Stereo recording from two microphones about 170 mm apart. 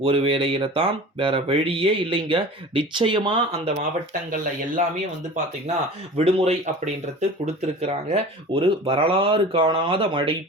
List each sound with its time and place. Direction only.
0.0 s speech: 30° right (ahead or behind)
6.1 s speech: 40° right (ahead or behind)